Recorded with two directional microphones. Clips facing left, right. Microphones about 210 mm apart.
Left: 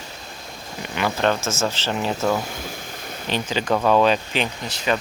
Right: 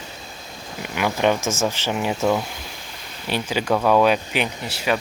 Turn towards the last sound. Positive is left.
turn(degrees=-10)  # may be behind; listen again after turning